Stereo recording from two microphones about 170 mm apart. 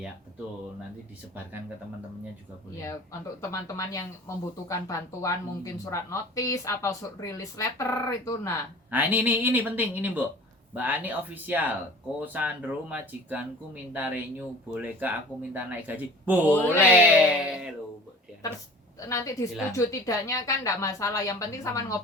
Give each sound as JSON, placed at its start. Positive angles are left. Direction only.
{"t": 2.7, "sound": "speech", "side_deg": 20}
{"t": 8.9, "sound": "speech", "side_deg": -10}
{"t": 16.5, "sound": "speech", "side_deg": 10}
{"t": 17.2, "sound": "speech", "side_deg": -5}
{"t": 19.0, "sound": "a woman's voice", "side_deg": 20}